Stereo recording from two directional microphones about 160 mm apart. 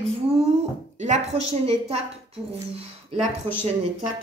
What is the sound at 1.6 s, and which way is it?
Speech, 35° right (ahead or behind).